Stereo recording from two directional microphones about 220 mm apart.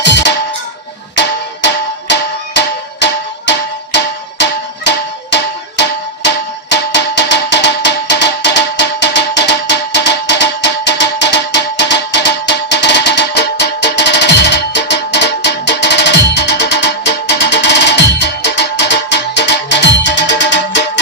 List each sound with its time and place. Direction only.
0.0 s music: 50° left (ahead or behind)
2.1 s music: 50° left (ahead or behind)